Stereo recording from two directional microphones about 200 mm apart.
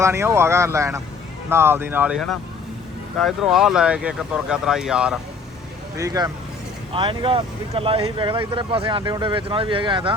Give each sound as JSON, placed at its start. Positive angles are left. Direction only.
{"t": 0.0, "sound": "speech", "side_deg": -15}
{"t": 6.0, "sound": "speech", "side_deg": -15}